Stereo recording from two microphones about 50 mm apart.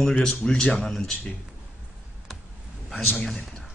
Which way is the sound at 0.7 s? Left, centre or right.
Centre.